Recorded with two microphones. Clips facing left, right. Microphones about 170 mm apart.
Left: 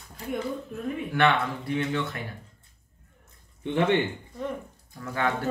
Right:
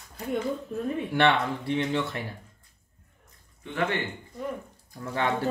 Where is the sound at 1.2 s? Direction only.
30° right (ahead or behind).